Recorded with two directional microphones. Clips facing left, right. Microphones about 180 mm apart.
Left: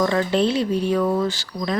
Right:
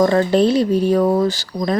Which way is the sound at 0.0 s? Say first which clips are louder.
Right 5 dB; 40° right (ahead or behind).